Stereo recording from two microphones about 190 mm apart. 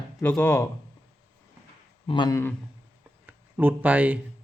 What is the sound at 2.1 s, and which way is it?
Speech, 20° left (ahead or behind).